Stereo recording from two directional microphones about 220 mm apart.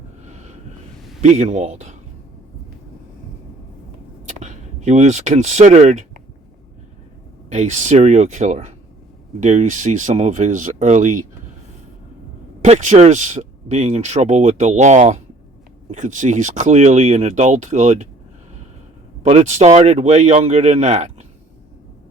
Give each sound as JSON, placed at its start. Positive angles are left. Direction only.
{"t": 0.3, "sound": "a sound", "side_deg": -30}
{"t": 1.2, "sound": "speech", "side_deg": -30}
{"t": 4.3, "sound": "speech", "side_deg": -35}
{"t": 7.5, "sound": "speech", "side_deg": -30}
{"t": 12.6, "sound": "speech", "side_deg": -30}
{"t": 19.2, "sound": "speech", "side_deg": -30}